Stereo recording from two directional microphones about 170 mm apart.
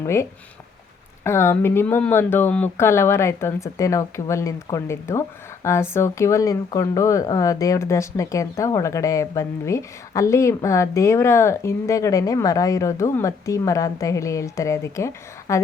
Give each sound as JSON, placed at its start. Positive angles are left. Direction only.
{"t": 0.0, "sound": "speech", "side_deg": 15}